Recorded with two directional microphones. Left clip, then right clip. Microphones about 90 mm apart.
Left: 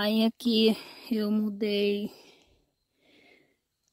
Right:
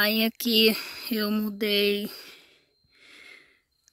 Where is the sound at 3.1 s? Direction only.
25° left (ahead or behind).